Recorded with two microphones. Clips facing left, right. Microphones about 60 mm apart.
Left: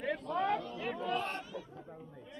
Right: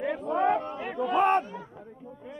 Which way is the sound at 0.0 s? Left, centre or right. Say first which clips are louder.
Right 7 dB; centre.